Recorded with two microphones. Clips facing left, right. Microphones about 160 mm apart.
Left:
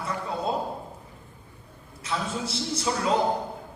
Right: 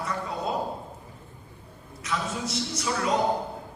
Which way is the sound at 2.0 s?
30° left (ahead or behind).